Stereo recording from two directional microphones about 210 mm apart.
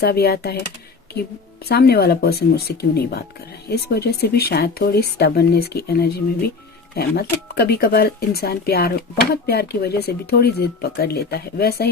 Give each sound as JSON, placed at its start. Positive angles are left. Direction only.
{"t": 0.0, "sound": "speech", "side_deg": 50}
{"t": 1.6, "sound": "speech", "side_deg": 50}